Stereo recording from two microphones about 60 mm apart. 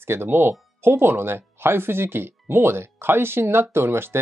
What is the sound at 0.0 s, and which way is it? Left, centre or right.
Speech, right.